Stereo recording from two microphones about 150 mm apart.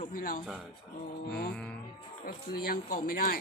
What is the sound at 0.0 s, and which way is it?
Speech, 65° left (ahead or behind).